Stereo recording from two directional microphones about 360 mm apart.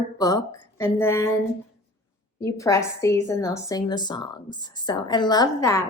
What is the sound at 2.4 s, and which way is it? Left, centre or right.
A woman's voice, centre.